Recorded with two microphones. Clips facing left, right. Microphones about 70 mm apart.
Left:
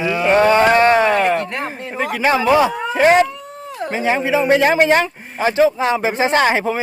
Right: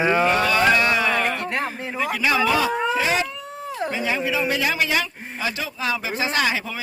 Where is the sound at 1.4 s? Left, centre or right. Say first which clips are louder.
Left 1 dB; centre.